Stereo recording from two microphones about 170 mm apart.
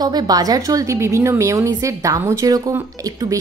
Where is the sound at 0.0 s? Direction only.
20° right (ahead or behind).